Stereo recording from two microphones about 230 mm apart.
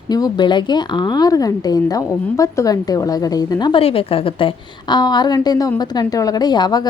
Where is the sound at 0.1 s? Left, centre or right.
Centre.